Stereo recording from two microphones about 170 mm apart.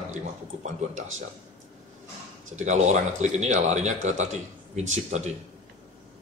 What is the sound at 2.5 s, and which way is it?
Speech, 45° right (ahead or behind).